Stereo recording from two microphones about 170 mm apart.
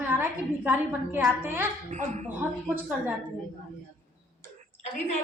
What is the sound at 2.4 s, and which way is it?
Speech, 10° right (ahead or behind).